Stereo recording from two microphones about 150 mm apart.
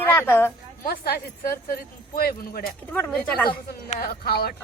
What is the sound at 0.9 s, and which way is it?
Speech, 75° left (ahead or behind).